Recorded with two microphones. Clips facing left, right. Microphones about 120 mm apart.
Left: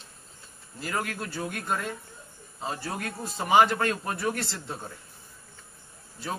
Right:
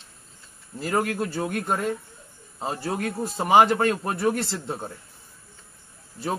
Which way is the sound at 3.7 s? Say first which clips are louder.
Right 5 dB; 25° right (ahead or behind).